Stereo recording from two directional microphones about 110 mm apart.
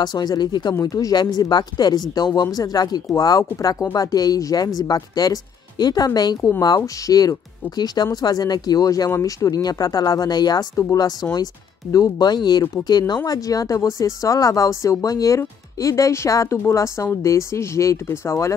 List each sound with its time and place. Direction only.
0.0 s speech: 40° left (ahead or behind)